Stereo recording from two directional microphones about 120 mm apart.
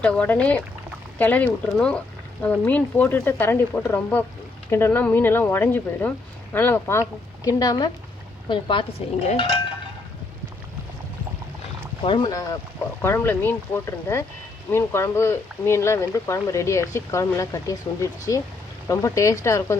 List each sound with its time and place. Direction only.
0.0 s speech: 10° left (ahead or behind)
7.4 s speech: 30° left (ahead or behind)
8.4 s a woman's voice: 45° left (ahead or behind)
9.2 s a woman's voice: 55° left (ahead or behind)
12.0 s speech: 40° left (ahead or behind)
13.0 s speech: 20° left (ahead or behind)